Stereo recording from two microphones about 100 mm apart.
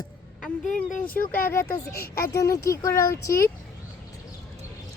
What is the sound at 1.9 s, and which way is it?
Speech, 30° left (ahead or behind).